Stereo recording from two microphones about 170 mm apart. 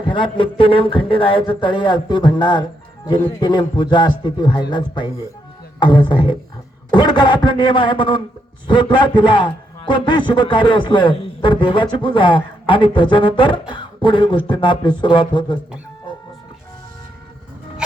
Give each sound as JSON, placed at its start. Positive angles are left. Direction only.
{"t": 0.0, "sound": "a man's voice", "side_deg": 30}